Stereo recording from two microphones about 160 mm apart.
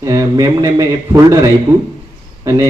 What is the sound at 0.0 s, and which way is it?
A man's voice, 20° right (ahead or behind).